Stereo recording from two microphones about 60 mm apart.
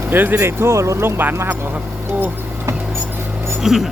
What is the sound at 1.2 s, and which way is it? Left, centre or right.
Speech, right.